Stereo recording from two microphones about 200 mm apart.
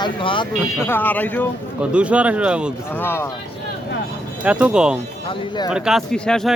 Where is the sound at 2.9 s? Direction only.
10° left (ahead or behind).